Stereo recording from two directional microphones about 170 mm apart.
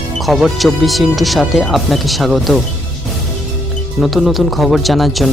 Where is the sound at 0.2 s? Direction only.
Centre (ahead or behind).